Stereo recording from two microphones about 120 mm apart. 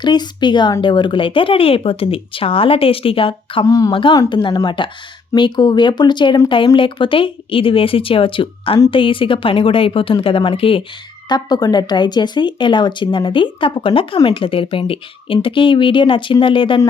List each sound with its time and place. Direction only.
0.0 s speech: 35° left (ahead or behind)
3.7 s a woman's voice: 30° left (ahead or behind); by 10.8 s 50° left (ahead or behind)
11.3 s speech: 35° left (ahead or behind)